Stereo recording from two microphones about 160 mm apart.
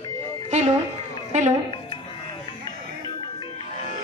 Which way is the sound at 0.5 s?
45° right (ahead or behind).